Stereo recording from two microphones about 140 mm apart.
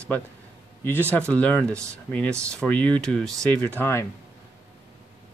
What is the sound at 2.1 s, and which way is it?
Speech, 10° left (ahead or behind).